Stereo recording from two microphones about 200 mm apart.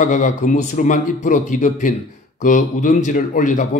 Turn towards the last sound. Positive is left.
turn(degrees=40)  # may be behind; listen again after turning